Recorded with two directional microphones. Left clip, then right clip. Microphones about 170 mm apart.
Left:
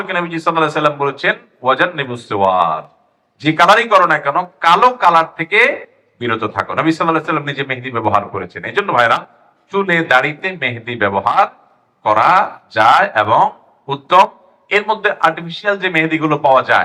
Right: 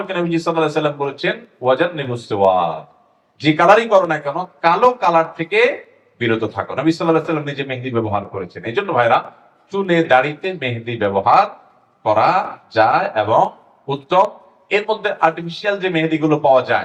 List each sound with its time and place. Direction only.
0.1 s speech: 15° left (ahead or behind)